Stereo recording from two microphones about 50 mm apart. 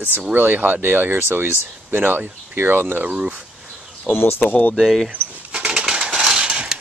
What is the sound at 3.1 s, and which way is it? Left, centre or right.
Speech, right.